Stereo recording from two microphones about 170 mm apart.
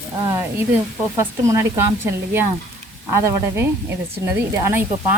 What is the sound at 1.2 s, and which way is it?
Speech, 15° right (ahead or behind).